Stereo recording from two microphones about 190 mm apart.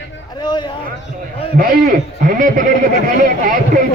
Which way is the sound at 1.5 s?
50° right (ahead or behind).